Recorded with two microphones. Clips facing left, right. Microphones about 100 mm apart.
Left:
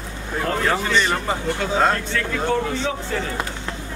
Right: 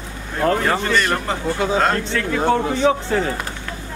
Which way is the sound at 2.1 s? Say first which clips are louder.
Right 4 dB; 40° right (ahead or behind).